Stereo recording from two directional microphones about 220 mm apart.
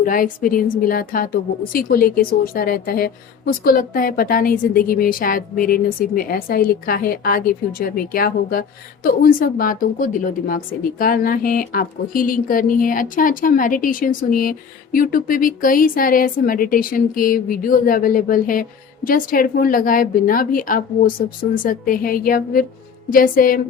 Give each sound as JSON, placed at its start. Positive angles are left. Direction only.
{"t": 0.0, "sound": "a woman's voice", "side_deg": 40}